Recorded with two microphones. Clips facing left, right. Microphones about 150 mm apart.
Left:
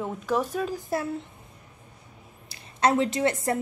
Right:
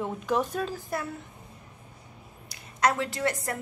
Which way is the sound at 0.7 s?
25° left (ahead or behind).